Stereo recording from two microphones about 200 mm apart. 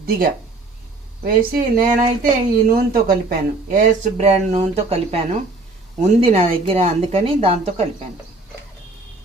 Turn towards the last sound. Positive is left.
turn(degrees=-30)  # may be behind; listen again after turning